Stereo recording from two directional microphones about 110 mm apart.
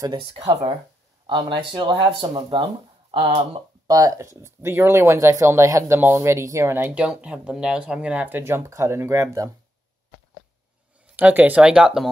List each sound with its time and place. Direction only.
0.2 s speech: 60° right (ahead or behind)
2.0 s speech: 45° right (ahead or behind)
3.8 s speech: 30° right (ahead or behind)
11.1 s speech: 15° right (ahead or behind)